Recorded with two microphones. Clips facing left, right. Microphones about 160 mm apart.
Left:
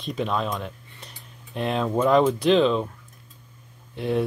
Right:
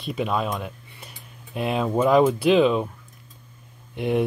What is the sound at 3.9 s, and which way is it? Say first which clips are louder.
Speech: right 2 dB; 15° right (ahead or behind).